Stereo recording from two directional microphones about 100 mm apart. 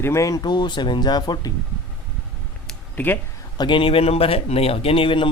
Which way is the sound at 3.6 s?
55° left (ahead or behind).